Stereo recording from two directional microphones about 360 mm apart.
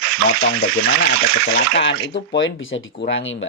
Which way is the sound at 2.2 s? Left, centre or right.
Left.